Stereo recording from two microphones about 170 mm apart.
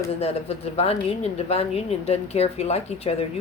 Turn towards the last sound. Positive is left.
turn(degrees=35)  # may be behind; listen again after turning